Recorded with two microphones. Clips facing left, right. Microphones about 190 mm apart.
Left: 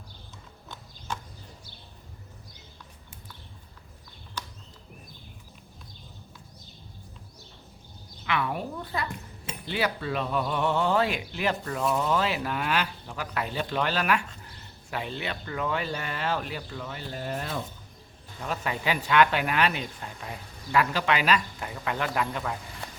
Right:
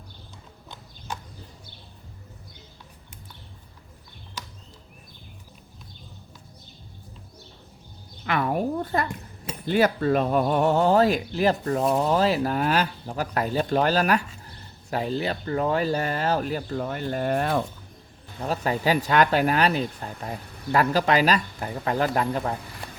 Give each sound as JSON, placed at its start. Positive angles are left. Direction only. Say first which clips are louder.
{"t": 8.2, "sound": "a woman's voice", "louder": "right 5 dB", "side_deg": -45}
{"t": 18.3, "sound": "speech", "louder": "right 6 dB", "side_deg": -35}